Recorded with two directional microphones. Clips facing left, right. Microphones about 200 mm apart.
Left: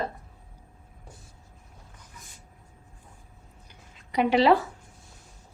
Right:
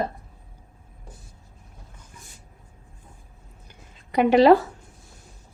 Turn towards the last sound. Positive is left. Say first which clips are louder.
# right 5 dB
turn(degrees=-45)  # may be behind; listen again after turning